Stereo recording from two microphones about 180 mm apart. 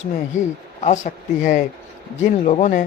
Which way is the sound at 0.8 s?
40° left (ahead or behind).